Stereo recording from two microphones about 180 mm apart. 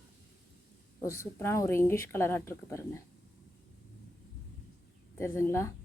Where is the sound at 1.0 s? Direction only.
15° left (ahead or behind).